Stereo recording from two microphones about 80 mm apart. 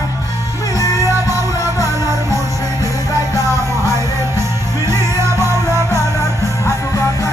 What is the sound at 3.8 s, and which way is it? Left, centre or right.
Music, right.